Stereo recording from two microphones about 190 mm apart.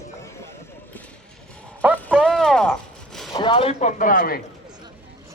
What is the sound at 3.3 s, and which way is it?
A man's voice, 25° left (ahead or behind).